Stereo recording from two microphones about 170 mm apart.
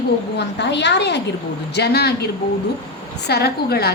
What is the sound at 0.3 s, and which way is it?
Speech, 90° left.